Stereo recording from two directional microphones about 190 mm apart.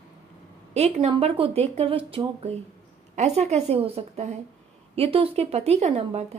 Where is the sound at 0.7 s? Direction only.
35° right (ahead or behind).